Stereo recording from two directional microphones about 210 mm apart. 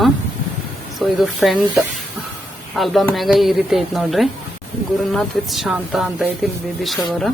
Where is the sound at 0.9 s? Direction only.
Centre (ahead or behind).